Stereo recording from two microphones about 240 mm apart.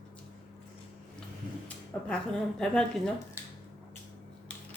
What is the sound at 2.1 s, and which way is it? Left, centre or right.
A woman's voice, centre.